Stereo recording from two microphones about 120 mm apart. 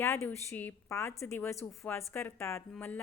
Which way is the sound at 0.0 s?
20° left (ahead or behind).